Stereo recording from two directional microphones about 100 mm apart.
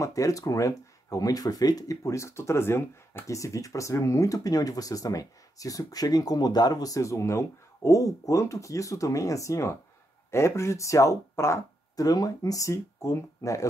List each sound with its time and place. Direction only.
0.0 s speech: 35° left (ahead or behind)